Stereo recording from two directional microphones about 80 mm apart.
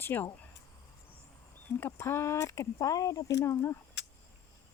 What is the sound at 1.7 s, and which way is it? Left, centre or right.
Speech, left.